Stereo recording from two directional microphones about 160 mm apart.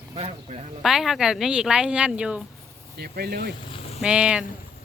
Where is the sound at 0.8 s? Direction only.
Centre (ahead or behind).